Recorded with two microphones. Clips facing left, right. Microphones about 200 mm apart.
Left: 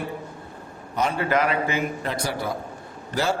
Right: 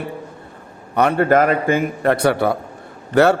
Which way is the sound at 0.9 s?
65° right (ahead or behind).